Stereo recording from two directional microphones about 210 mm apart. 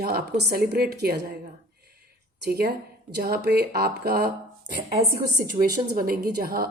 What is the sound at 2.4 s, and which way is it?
Speech, 50° right (ahead or behind).